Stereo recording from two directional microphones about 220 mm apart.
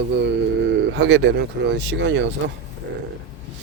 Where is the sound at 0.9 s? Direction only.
50° right (ahead or behind).